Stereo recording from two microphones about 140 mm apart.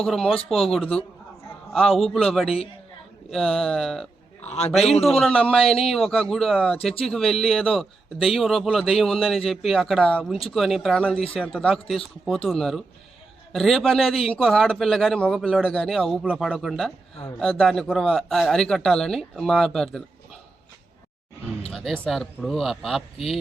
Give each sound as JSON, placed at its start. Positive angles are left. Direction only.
{"t": 0.0, "sound": "a man's voice", "side_deg": 0}
{"t": 4.4, "sound": "a sound", "side_deg": 50}
{"t": 5.0, "sound": "a man's voice", "side_deg": 0}
{"t": 21.7, "sound": "a man's voice", "side_deg": 0}